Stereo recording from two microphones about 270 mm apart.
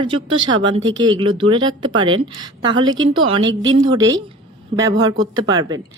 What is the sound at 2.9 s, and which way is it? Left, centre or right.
Speech, right.